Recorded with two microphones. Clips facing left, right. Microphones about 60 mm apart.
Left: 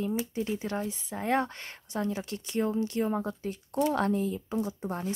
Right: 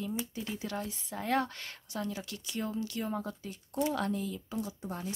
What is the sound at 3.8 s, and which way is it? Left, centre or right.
Speech, left.